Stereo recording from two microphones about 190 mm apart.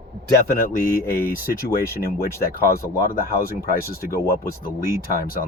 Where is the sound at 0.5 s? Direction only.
50° left (ahead or behind).